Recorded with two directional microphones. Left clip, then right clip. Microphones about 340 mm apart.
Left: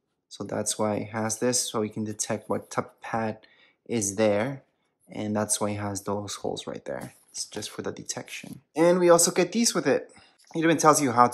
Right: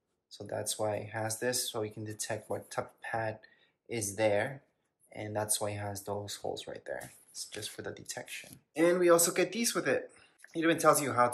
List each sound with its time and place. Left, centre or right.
0.3 s speech: left